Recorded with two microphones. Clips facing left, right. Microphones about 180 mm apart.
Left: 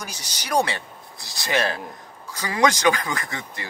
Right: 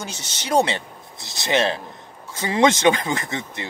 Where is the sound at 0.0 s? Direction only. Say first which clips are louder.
Right 3 dB; 25° right (ahead or behind).